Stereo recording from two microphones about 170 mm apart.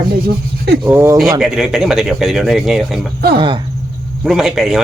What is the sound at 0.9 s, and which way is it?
Speech, 15° right (ahead or behind).